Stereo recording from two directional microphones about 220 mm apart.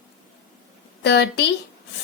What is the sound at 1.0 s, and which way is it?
Speech, 50° left (ahead or behind).